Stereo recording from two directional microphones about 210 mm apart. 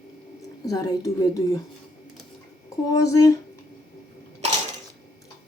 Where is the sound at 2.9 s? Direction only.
15° left (ahead or behind).